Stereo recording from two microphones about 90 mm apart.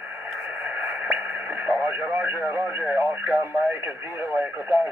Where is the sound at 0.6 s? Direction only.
20° right (ahead or behind).